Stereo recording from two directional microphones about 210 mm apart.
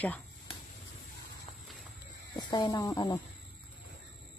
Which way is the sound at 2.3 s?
20° left (ahead or behind).